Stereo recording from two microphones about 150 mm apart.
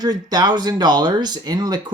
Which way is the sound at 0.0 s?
25° right (ahead or behind).